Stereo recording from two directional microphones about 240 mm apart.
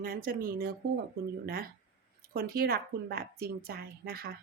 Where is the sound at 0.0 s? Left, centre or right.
Right.